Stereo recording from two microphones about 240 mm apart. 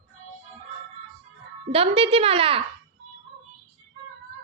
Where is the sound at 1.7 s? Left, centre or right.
Right.